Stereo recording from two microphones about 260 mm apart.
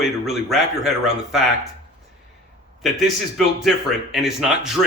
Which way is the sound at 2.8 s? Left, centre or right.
Centre.